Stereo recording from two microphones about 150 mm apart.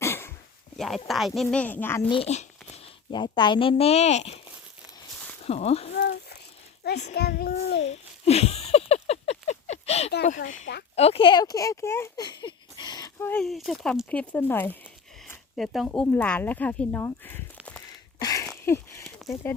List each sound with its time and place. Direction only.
0.0 s a sound: 15° left (ahead or behind)
0.8 s speech: centre (ahead or behind)
2.0 s a child's voice: 40° left (ahead or behind)
3.1 s a child's voice: 30° left (ahead or behind); by 4.4 s 50° left (ahead or behind)
5.4 s speech: 45° left (ahead or behind)
7.1 s a child's voice: 90° left
7.8 s a sound: 45° left (ahead or behind)
10.1 s speech: 75° left (ahead or behind)
10.9 s speech: 40° left (ahead or behind); by 13.1 s 25° left (ahead or behind)
13.1 s speech: 15° left (ahead or behind)
13.4 s speech: centre (ahead or behind)
15.5 s speech: centre (ahead or behind)
18.2 s a sound: 25° left (ahead or behind)
19.3 s speech: 15° left (ahead or behind)